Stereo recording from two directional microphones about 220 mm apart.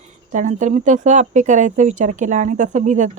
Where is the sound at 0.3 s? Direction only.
35° right (ahead or behind).